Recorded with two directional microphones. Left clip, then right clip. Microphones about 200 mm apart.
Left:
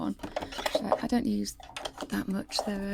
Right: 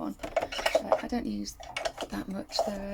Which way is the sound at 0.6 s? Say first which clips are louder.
Even; 40° left (ahead or behind).